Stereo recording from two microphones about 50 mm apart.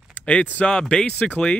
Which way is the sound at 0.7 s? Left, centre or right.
Centre.